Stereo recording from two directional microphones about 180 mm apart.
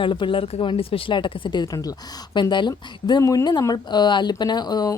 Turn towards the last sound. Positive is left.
turn(degrees=20)  # may be behind; listen again after turning